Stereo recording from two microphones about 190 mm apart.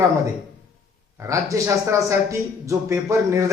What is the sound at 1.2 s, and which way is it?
A man's voice, 15° right (ahead or behind).